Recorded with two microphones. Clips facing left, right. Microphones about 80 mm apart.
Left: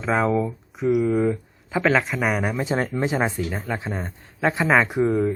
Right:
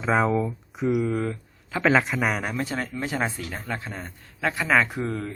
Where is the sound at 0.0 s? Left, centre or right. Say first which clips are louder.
Left 1 dB; centre.